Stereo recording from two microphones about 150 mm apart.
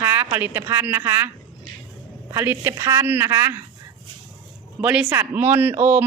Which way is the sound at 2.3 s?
15° right (ahead or behind).